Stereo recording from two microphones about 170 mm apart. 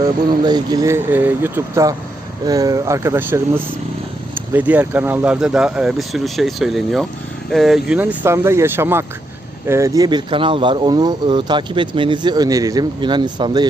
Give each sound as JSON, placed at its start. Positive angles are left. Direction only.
{"t": 0.4, "sound": "speech", "side_deg": -25}